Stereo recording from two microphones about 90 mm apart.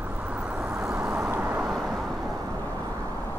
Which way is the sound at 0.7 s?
30° right (ahead or behind).